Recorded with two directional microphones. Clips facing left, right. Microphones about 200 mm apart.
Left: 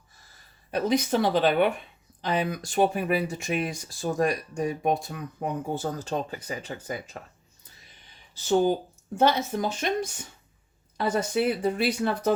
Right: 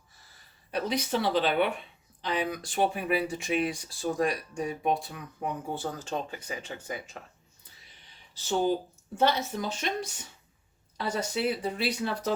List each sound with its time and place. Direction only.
0.7 s speech: 45° left (ahead or behind)
9.1 s speech: 50° left (ahead or behind)